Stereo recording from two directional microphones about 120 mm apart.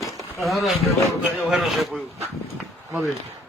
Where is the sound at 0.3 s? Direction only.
Centre (ahead or behind).